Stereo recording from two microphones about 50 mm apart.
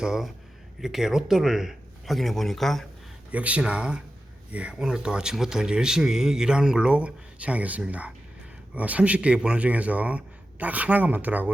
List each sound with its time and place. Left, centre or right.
0.0 s speech: centre
2.1 s speech: centre
3.3 s speech: right